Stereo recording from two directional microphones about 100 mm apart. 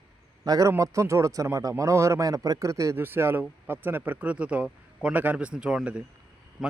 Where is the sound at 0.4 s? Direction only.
40° right (ahead or behind).